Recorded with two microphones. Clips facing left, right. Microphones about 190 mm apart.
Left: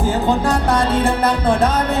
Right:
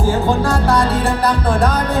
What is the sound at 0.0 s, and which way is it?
Music, 20° left (ahead or behind).